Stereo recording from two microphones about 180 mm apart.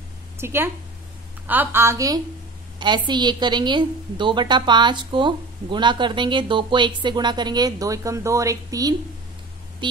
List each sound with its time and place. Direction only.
0.4 s a woman's voice: 15° right (ahead or behind)